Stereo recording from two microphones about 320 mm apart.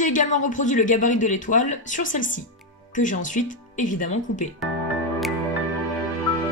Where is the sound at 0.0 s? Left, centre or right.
Left.